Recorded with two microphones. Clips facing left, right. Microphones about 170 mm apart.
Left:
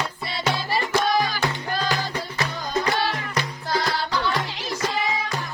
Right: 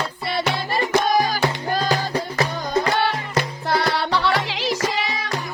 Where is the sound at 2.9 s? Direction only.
60° right (ahead or behind).